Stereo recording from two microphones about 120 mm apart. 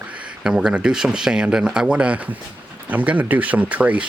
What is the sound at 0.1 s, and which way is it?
Speech, 10° right (ahead or behind).